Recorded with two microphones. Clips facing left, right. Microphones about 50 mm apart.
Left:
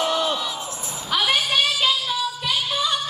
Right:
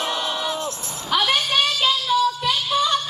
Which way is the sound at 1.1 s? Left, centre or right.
Centre.